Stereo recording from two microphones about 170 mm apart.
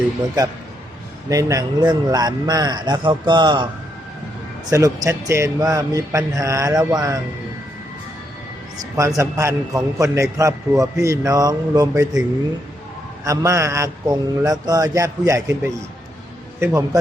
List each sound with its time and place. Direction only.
1.3 s a man's voice: 20° right (ahead or behind)
4.7 s a man's voice: 15° right (ahead or behind)
9.0 s a man's voice: 20° right (ahead or behind)
13.2 s a man's voice: 20° right (ahead or behind)